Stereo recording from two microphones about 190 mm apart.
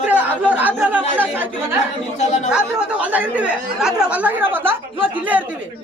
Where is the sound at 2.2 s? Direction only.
35° left (ahead or behind).